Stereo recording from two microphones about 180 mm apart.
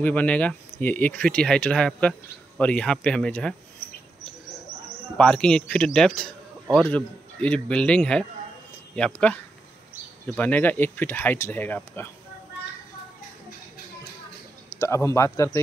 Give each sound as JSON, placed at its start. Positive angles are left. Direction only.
{"t": 0.0, "sound": "speech", "side_deg": 10}
{"t": 5.1, "sound": "speech", "side_deg": 5}
{"t": 14.8, "sound": "speech", "side_deg": 15}